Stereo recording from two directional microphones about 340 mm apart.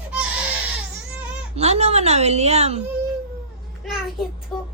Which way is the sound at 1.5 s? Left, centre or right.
Centre.